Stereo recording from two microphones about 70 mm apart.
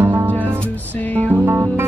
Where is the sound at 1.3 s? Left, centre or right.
Right.